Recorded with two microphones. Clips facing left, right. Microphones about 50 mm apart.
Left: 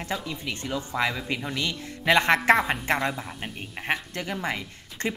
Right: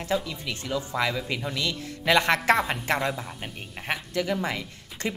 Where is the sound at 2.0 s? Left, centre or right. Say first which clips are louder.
Left 1 dB; left.